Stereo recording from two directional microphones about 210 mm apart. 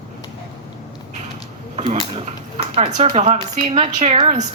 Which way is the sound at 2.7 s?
30° right (ahead or behind).